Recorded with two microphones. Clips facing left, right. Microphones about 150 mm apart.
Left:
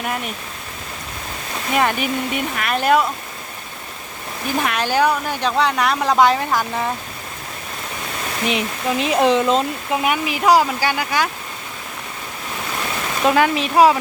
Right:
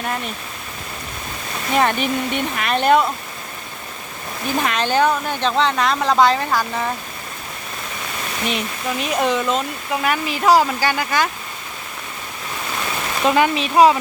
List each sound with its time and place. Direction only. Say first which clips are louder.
1.7 s speech: right 1 dB; 10° left (ahead or behind)
4.6 s speech: even; 10° left (ahead or behind)
8.4 s speech: left 3 dB; 20° left (ahead or behind)
10.0 s speech: even; 10° left (ahead or behind)
13.2 s speech: left 1 dB; 10° left (ahead or behind)